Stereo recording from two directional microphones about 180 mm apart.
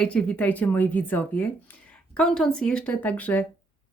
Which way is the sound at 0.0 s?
5° left (ahead or behind).